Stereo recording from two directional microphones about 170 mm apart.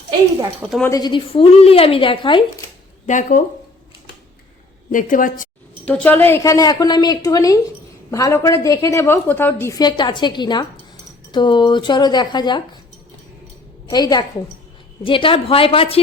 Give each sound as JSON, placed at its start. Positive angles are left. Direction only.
{"t": 0.6, "sound": "a woman's voice", "side_deg": 5}
{"t": 0.9, "sound": "a woman's voice", "side_deg": 25}
{"t": 3.1, "sound": "a woman's voice", "side_deg": 50}
{"t": 4.9, "sound": "a woman's voice", "side_deg": 50}
{"t": 5.8, "sound": "a woman's voice", "side_deg": 10}
{"t": 13.8, "sound": "a woman's voice", "side_deg": 25}